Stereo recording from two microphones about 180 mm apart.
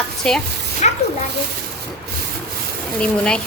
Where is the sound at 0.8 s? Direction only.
40° left (ahead or behind).